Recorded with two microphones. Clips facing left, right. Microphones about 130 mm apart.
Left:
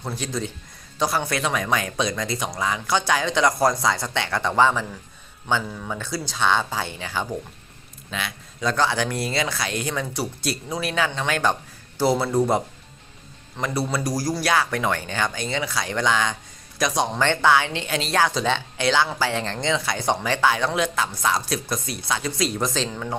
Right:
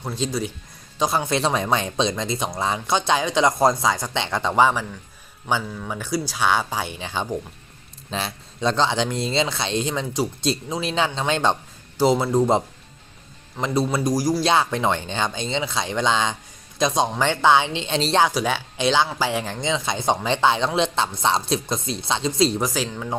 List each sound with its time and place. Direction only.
0.2 s speech: 10° right (ahead or behind)
5.6 s speech: centre (ahead or behind)
6.0 s speech: 10° right (ahead or behind); by 18.3 s 25° right (ahead or behind)
18.3 s speech: 10° right (ahead or behind)
22.6 s speech: 10° right (ahead or behind)